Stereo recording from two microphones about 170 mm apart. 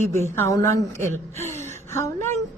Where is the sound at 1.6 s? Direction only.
15° left (ahead or behind).